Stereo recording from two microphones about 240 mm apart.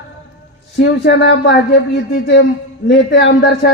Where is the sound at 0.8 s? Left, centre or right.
Left.